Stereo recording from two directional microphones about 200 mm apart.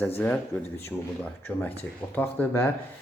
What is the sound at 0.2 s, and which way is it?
Speech, 10° left (ahead or behind).